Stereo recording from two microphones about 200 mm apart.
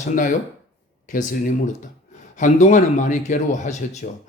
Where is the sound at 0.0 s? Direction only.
40° left (ahead or behind).